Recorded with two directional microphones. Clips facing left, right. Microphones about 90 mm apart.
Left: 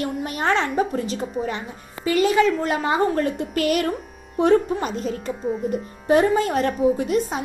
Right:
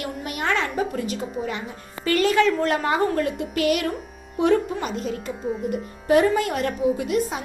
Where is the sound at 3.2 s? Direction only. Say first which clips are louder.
Left 1 dB; 40° left (ahead or behind).